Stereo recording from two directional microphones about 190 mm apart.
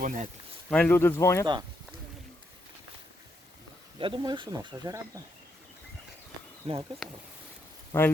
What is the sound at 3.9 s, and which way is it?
Speech, 25° right (ahead or behind).